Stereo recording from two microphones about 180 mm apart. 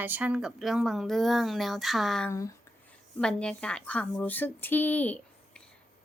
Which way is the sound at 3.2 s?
5° left (ahead or behind).